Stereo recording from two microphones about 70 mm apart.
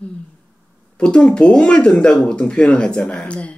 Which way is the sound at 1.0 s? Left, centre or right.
Centre.